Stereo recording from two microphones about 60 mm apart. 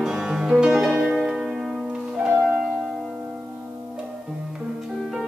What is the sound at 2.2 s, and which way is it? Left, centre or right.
Harp, right.